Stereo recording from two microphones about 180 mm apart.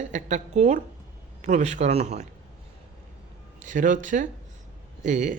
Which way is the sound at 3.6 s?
45° right (ahead or behind).